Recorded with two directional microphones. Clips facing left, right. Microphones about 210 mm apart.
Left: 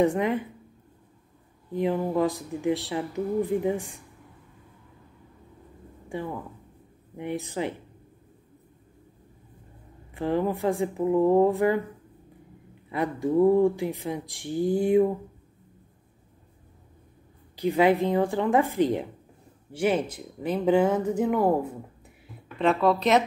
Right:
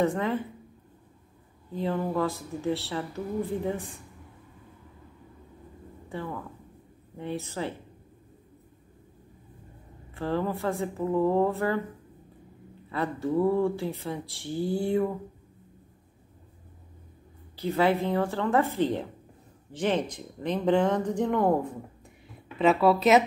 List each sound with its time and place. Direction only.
0.0 s speech: 15° left (ahead or behind)
1.7 s speech: 15° left (ahead or behind)
6.0 s speech: 15° left (ahead or behind)
10.1 s speech: 15° left (ahead or behind)
12.9 s speech: 15° left (ahead or behind)
17.6 s speech: 15° left (ahead or behind)
22.6 s speech: 5° right (ahead or behind)